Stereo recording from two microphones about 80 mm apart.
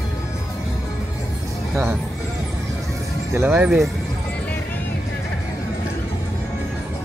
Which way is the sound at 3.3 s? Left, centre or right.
Right.